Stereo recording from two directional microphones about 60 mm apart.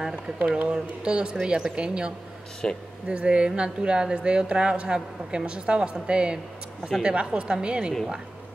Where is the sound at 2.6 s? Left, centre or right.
Centre.